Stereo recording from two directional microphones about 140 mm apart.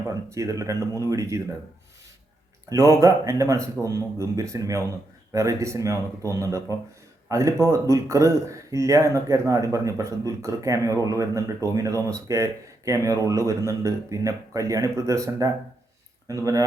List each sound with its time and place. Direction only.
0.1 s speech: 20° right (ahead or behind)
2.6 s speech: 25° right (ahead or behind)